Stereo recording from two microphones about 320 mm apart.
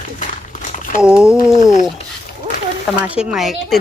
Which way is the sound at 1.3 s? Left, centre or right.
Left.